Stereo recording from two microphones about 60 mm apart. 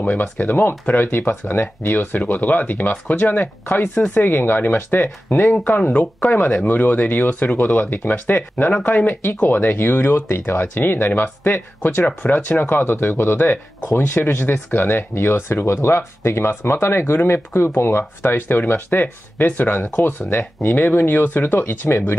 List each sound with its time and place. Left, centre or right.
0.0 s speech: left
0.4 s speech: left